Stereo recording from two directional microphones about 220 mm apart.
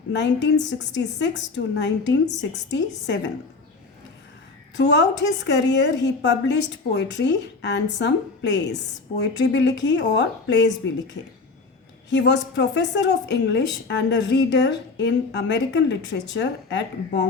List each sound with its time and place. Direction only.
0.1 s a woman's voice: 55° left (ahead or behind)
4.8 s a woman's voice: 50° left (ahead or behind)